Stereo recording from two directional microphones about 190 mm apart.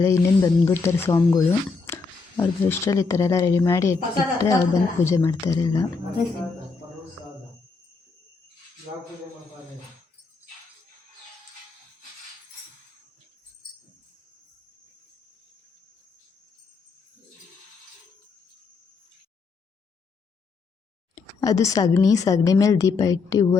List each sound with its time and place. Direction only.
0.0 s speech: 15° left (ahead or behind)
21.4 s a woman's voice: 20° left (ahead or behind)